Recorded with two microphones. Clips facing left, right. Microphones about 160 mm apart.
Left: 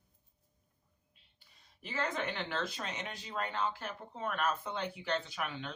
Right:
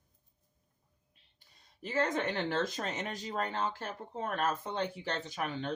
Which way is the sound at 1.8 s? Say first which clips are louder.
Right 5 dB; 40° right (ahead or behind).